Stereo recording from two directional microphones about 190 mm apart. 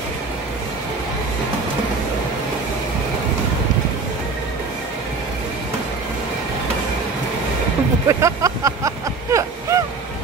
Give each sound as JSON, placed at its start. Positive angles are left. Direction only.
{"t": 8.1, "sound": "vehicle", "side_deg": -15}